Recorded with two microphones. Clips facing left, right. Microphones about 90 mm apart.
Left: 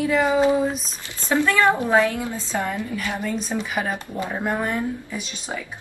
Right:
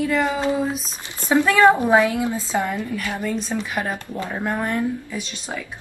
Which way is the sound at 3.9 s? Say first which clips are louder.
Even; 15° left (ahead or behind).